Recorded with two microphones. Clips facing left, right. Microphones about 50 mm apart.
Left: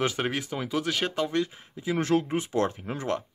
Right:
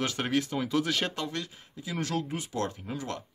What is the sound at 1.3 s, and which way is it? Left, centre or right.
Speech, left.